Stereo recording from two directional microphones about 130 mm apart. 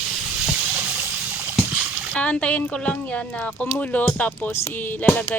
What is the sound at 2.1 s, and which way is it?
Speech, 10° left (ahead or behind).